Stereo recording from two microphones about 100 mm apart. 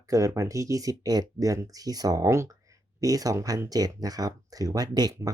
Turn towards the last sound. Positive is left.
turn(degrees=-40)  # may be behind; listen again after turning